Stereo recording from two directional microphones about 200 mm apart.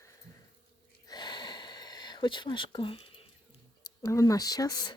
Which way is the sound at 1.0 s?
20° left (ahead or behind).